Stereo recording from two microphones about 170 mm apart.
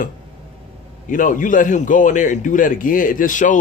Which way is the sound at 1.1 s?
50° left (ahead or behind).